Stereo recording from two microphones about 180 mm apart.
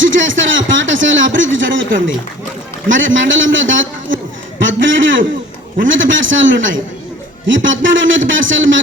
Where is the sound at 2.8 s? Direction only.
90° right.